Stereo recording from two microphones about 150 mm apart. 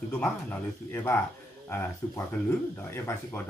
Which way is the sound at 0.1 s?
15° left (ahead or behind).